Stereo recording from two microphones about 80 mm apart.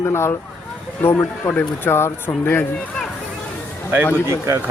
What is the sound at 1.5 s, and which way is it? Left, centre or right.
Speech, left.